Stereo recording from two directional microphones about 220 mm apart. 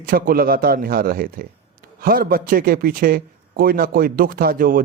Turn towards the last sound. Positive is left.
turn(degrees=-40)  # may be behind; listen again after turning